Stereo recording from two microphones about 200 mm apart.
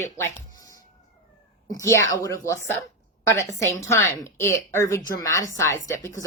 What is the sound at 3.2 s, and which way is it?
A woman's voice, 15° left (ahead or behind).